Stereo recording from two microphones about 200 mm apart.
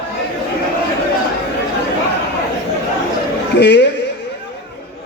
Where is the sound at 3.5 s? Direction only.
60° left (ahead or behind).